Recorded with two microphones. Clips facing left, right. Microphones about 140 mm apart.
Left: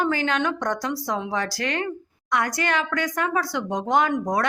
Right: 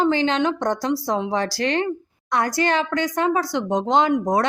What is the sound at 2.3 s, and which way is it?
Speech, 30° right (ahead or behind).